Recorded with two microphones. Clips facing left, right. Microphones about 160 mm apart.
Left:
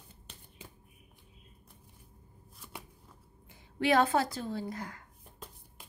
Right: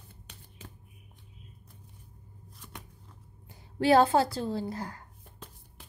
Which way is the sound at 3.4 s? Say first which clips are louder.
Right 5 dB; 35° right (ahead or behind).